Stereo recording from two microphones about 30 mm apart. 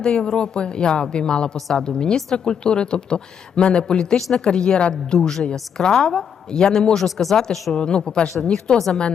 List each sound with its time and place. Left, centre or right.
0.0 s speech: left
5.2 s speech: left
6.9 s speech: centre
7.7 s speech: left